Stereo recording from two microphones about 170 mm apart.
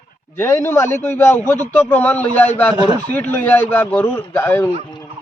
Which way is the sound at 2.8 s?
25° right (ahead or behind).